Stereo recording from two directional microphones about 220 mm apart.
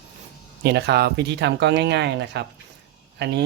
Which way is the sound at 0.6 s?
50° right (ahead or behind).